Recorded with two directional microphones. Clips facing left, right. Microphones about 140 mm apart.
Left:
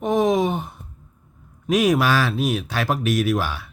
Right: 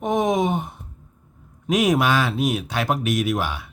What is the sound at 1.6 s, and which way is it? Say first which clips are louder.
A man's voice: left 1 dB; 20° right (ahead or behind).